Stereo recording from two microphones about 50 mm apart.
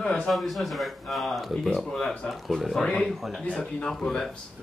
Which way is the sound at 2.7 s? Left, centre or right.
Centre.